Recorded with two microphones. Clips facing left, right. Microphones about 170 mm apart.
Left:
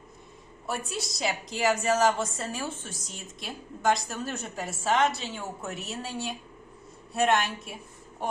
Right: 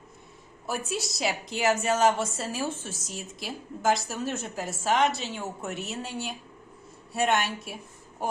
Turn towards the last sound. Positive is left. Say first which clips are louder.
# left 1 dB
turn(degrees=0)  # may be behind; listen again after turning